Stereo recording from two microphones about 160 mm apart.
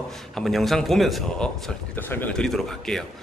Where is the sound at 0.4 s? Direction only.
Centre (ahead or behind).